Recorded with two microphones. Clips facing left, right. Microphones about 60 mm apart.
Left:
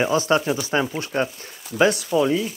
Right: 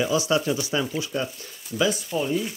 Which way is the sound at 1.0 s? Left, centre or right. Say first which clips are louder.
Left 4 dB; left.